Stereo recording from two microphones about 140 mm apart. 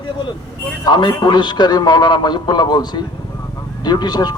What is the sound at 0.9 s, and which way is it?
A man's voice, 30° left (ahead or behind).